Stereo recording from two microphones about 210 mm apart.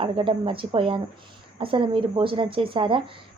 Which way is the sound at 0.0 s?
25° right (ahead or behind).